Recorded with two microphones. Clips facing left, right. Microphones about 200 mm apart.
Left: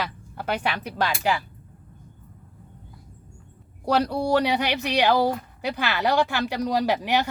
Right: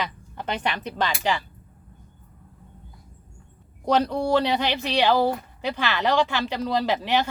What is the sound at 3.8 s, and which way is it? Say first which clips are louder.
A woman's voice: right 1 dB; 10° left (ahead or behind).